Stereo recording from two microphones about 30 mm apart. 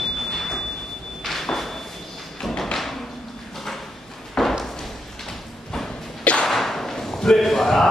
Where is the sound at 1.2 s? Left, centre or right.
Centre.